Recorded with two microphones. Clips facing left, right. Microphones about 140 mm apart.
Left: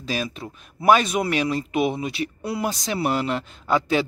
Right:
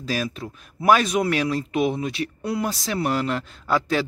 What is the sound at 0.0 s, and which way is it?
Speech, centre (ahead or behind).